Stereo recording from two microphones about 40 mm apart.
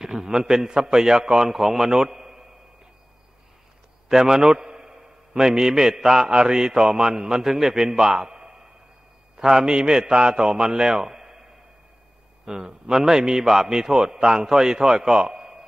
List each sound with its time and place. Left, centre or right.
0.0 s a man's voice: centre
4.1 s a man's voice: centre
12.4 s a man's voice: centre